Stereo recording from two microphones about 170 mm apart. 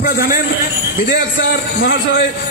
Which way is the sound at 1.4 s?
90° left.